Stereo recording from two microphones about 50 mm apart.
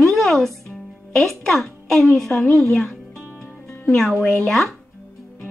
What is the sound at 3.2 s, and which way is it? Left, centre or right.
Music, left.